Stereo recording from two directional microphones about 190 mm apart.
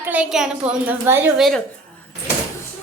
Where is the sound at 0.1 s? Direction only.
5° right (ahead or behind).